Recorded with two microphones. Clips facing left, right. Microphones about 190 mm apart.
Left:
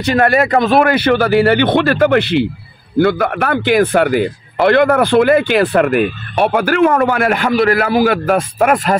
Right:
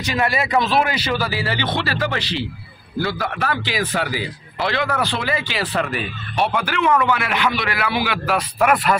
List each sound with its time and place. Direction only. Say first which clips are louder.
0.0 s speech: left 9 dB; 55° left (ahead or behind)